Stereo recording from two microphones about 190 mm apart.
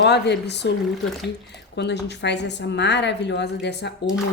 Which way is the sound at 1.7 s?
65° left (ahead or behind).